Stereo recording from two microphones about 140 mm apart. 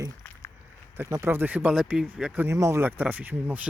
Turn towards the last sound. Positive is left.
turn(degrees=-10)  # may be behind; listen again after turning